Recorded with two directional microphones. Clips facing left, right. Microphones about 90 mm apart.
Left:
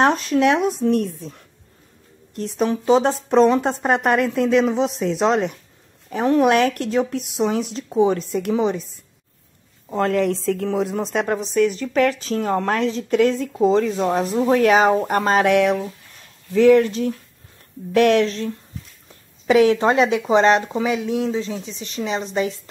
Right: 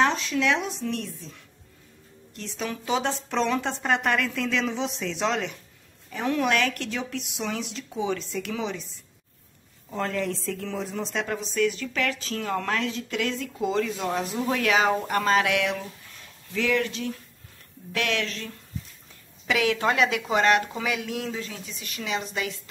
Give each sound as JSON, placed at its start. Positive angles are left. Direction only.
{"t": 0.0, "sound": "speech", "side_deg": 45}
{"t": 9.8, "sound": "speech", "side_deg": 60}
{"t": 10.5, "sound": "speech", "side_deg": 55}
{"t": 10.8, "sound": "speech", "side_deg": 65}